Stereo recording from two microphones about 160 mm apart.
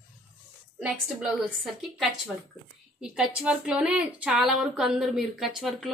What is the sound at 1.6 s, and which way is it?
Speech, centre (ahead or behind).